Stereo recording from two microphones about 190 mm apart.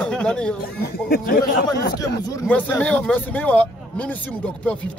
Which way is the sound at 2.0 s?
20° left (ahead or behind).